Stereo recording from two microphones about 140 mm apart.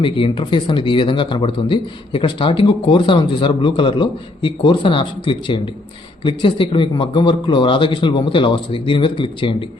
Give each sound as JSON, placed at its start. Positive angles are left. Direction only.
{"t": 0.0, "sound": "speech", "side_deg": 35}